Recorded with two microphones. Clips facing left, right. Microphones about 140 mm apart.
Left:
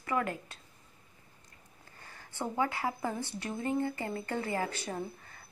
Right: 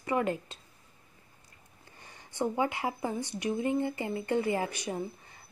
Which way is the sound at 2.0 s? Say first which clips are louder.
Right 6 dB; 20° right (ahead or behind).